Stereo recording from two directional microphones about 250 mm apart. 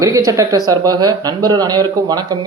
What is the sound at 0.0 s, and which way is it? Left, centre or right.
Speech, centre.